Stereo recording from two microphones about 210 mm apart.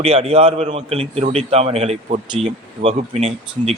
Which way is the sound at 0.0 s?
30° right (ahead or behind).